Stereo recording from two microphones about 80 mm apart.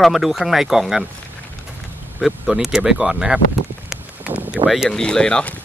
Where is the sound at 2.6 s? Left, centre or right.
Centre.